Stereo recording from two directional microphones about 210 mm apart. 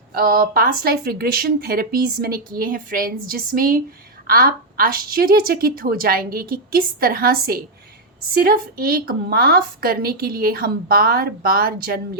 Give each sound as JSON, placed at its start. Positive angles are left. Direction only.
{"t": 0.1, "sound": "speech", "side_deg": -45}